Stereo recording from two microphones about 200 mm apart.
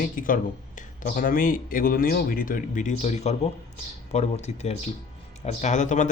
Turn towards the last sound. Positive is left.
turn(degrees=35)  # may be behind; listen again after turning